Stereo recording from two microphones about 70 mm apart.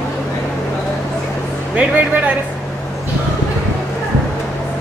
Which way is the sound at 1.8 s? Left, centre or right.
Right.